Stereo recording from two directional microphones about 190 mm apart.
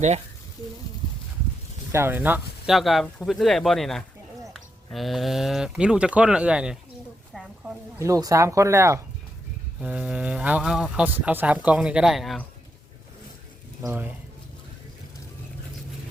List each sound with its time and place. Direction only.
1.9 s speech: 10° right (ahead or behind)
7.9 s speech: 15° right (ahead or behind); by 12.5 s centre (ahead or behind)
13.8 s speech: 10° right (ahead or behind)